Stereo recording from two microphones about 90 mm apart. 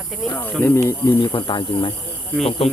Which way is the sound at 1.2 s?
60° left (ahead or behind).